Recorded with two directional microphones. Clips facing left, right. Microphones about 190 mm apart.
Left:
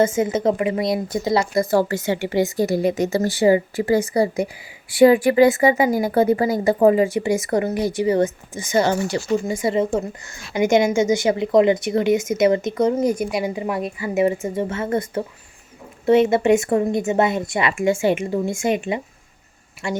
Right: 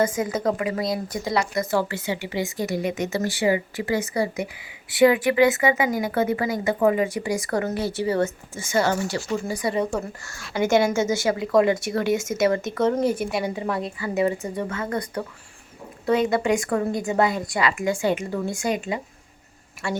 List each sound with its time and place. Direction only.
0.0 s a woman's voice: 25° left (ahead or behind)
1.9 s a woman's voice: 45° left (ahead or behind); by 19.0 s 25° left (ahead or behind)